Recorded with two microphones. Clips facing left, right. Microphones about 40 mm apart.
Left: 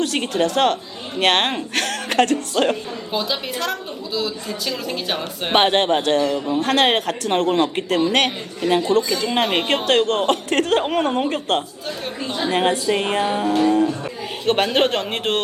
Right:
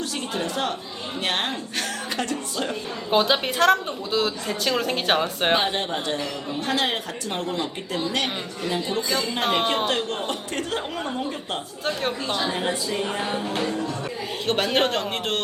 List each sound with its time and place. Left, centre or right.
0.0 s speech: left
3.1 s a woman's voice: right
5.5 s speech: left
11.9 s a woman's voice: right
12.5 s speech: left
13.6 s a man's voice: left